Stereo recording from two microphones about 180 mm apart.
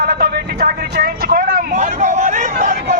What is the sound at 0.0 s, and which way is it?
Vehicle, 55° right (ahead or behind).